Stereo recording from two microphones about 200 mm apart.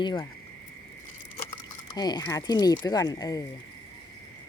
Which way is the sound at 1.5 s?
20° left (ahead or behind).